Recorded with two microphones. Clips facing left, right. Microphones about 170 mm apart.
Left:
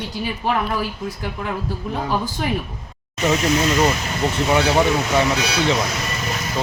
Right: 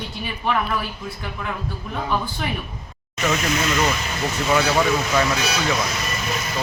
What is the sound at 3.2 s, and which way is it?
Speech, 30° left (ahead or behind).